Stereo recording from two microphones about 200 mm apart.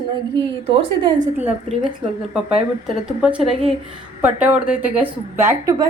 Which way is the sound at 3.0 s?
5° right (ahead or behind).